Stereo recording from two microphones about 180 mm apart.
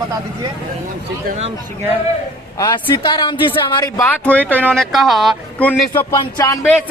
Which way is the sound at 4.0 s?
10° left (ahead or behind).